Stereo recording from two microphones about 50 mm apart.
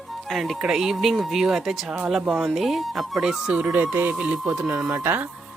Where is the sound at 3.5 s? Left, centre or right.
Right.